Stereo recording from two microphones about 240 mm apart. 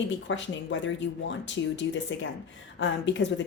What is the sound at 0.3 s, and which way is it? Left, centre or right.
A woman's voice, left.